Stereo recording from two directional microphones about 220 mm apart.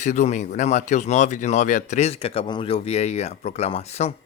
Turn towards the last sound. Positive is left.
turn(degrees=30)  # may be behind; listen again after turning